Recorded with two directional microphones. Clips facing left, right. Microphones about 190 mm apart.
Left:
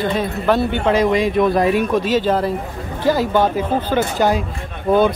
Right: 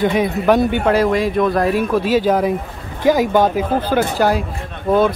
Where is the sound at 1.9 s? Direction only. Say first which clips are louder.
Right 2 dB; 10° right (ahead or behind).